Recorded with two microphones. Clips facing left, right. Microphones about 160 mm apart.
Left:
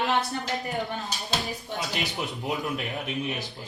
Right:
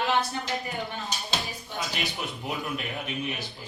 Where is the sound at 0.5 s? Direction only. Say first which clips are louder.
Left 3 dB; centre (ahead or behind).